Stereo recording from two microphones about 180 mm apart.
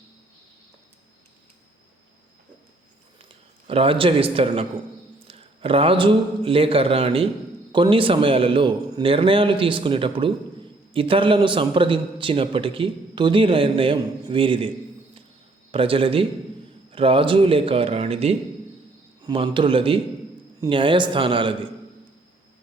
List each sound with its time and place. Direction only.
3.2 s a man's voice: 30° right (ahead or behind)
15.7 s a man's voice: 30° right (ahead or behind)